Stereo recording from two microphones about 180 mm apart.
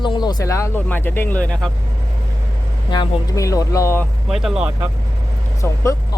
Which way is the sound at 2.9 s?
20° left (ahead or behind).